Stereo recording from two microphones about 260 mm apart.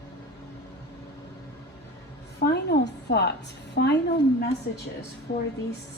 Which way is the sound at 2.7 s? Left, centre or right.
Left.